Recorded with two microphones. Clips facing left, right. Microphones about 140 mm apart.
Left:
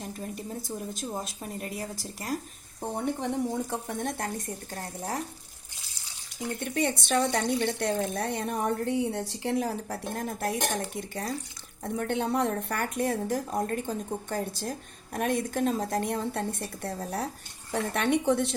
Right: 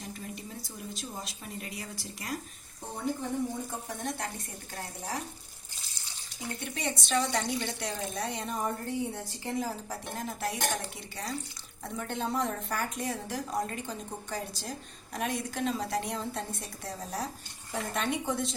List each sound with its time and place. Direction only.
0.0 s a woman's voice: 45° left (ahead or behind)
2.8 s a woman's voice: 60° left (ahead or behind)
6.7 s a woman's voice: 55° left (ahead or behind)
11.9 s speech: 60° left (ahead or behind)